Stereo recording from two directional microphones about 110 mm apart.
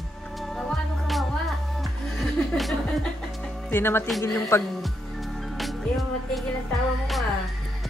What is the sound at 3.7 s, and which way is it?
Speech, 20° left (ahead or behind).